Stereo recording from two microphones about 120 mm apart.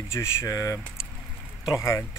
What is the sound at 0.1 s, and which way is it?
Speech, 20° left (ahead or behind).